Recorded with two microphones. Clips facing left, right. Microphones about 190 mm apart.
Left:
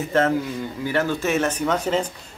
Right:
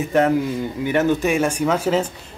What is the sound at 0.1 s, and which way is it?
Speech, 15° right (ahead or behind).